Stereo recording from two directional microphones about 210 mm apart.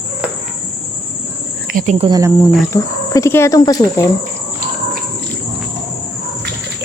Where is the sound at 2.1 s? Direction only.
15° right (ahead or behind).